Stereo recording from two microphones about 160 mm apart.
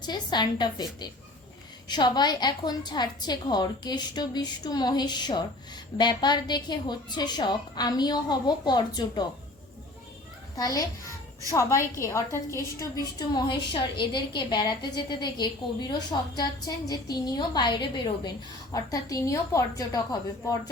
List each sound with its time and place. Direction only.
0.0 s a woman's voice: 25° left (ahead or behind)
1.9 s a woman's voice: 25° left (ahead or behind)
10.5 s a woman's voice: 20° left (ahead or behind)